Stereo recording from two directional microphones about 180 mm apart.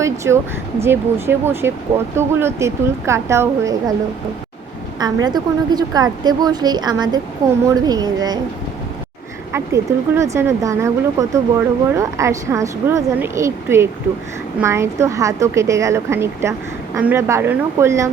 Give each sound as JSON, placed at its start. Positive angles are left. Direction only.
{"t": 0.8, "sound": "speech", "side_deg": -15}
{"t": 4.9, "sound": "a woman's voice", "side_deg": -20}
{"t": 9.5, "sound": "speech", "side_deg": -15}